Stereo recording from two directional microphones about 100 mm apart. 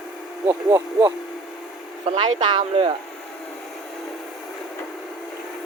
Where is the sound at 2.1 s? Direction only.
55° right (ahead or behind).